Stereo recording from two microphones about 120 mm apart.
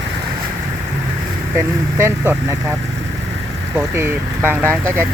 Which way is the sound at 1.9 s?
20° right (ahead or behind).